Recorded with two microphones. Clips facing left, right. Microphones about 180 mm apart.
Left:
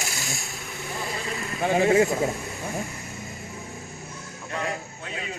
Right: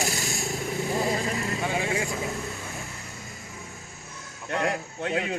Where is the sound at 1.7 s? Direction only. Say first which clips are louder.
Left 13 dB; 40° left (ahead or behind).